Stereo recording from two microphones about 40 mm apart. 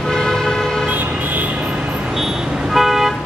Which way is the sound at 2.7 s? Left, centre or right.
Centre.